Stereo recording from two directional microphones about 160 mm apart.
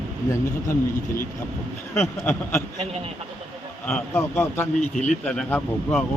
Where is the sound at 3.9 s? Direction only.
10° left (ahead or behind).